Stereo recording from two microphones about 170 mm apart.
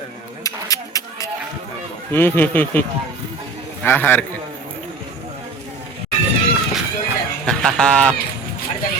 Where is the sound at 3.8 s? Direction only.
10° left (ahead or behind).